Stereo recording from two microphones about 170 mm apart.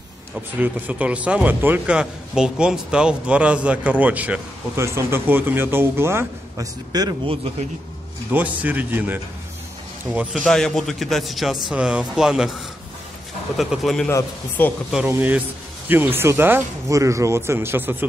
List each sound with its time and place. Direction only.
0.6 s a man's voice: 10° right (ahead or behind); by 7.3 s 25° right (ahead or behind)
8.3 s a man's voice: 10° right (ahead or behind)
10.1 s a man's voice: centre (ahead or behind)
13.6 s a man's voice: centre (ahead or behind)
15.0 s a man's voice: 10° right (ahead or behind)